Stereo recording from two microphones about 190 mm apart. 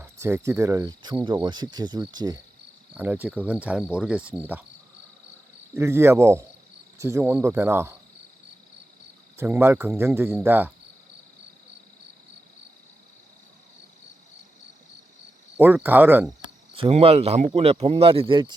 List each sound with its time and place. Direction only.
0.0 s speech: 15° right (ahead or behind)
2.9 s cricket: 10° right (ahead or behind)
5.7 s cricket: 15° right (ahead or behind)
9.4 s cricket: 15° right (ahead or behind)
15.5 s cricket: 10° right (ahead or behind)
16.4 s speech: 30° right (ahead or behind)